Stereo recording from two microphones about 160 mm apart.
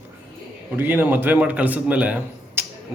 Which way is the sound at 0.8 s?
10° right (ahead or behind).